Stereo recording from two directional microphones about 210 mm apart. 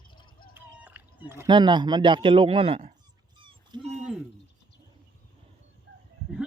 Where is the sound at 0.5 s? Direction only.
10° right (ahead or behind).